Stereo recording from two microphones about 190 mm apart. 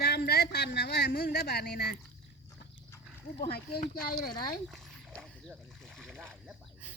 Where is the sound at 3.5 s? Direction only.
55° left (ahead or behind).